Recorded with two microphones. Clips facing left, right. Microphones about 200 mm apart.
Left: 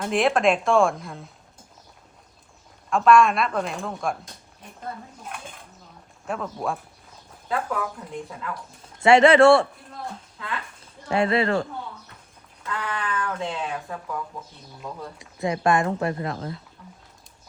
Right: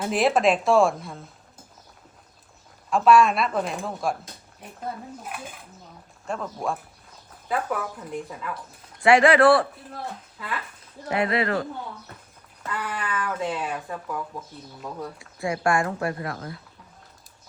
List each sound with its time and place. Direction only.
0.0 s speech: centre (ahead or behind)
2.9 s speech: centre (ahead or behind)
5.2 s speech: 5° right (ahead or behind)
9.0 s speech: 25° left (ahead or behind)
10.3 s speech: 5° right (ahead or behind)
11.1 s speech: 30° left (ahead or behind)
12.7 s speech: 5° right (ahead or behind)
15.2 s speech: 20° left (ahead or behind)